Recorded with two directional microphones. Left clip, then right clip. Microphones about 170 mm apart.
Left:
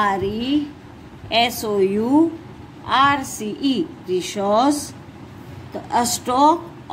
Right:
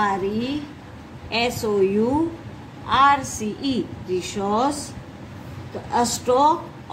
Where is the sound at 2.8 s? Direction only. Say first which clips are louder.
Even; 40° left (ahead or behind).